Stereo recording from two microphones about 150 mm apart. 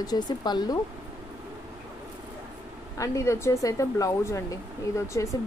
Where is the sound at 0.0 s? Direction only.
25° left (ahead or behind).